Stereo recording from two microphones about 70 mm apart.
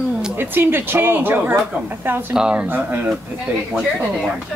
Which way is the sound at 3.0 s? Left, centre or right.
Centre.